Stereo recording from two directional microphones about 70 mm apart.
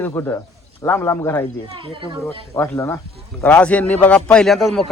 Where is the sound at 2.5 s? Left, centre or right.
Left.